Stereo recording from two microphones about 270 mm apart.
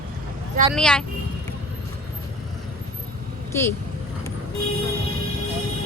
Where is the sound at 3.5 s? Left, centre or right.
Centre.